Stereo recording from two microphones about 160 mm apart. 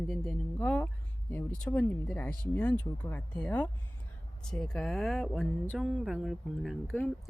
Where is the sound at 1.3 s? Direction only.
10° left (ahead or behind).